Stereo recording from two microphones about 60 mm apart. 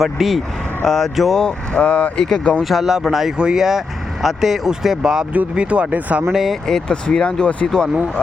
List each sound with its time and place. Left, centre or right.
0.0 s speech: centre
1.4 s speech: centre
2.6 s speech: centre
5.3 s speech: right
6.3 s speech: centre
6.7 s speech: centre